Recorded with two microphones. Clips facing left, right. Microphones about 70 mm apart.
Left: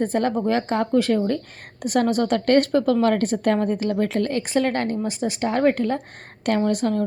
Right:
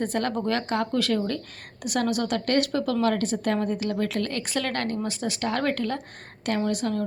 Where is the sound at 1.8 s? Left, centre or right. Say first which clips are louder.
Left 5 dB; left.